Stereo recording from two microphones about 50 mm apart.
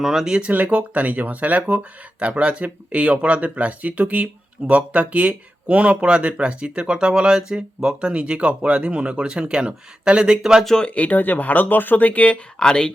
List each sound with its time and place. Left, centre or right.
0.0 s speech: centre
0.4 s speech: right
10.8 s speech: left